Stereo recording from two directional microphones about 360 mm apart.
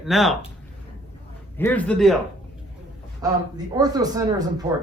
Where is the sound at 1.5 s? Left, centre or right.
Centre.